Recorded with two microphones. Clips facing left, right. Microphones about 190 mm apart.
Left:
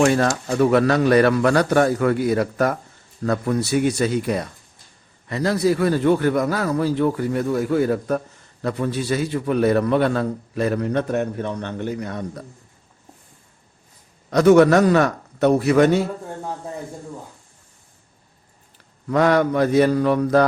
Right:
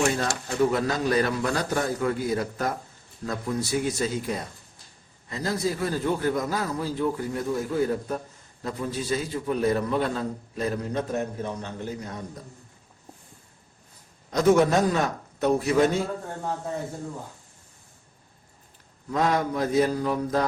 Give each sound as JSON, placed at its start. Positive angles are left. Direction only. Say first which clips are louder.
{"t": 0.0, "sound": "a man's voice", "louder": "left 8 dB", "side_deg": 70}
{"t": 14.3, "sound": "a man's voice", "louder": "left 7 dB", "side_deg": 70}
{"t": 19.1, "sound": "a man's voice", "louder": "left 7 dB", "side_deg": 75}